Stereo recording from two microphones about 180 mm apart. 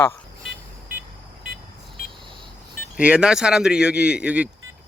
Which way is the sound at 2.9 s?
5° right (ahead or behind).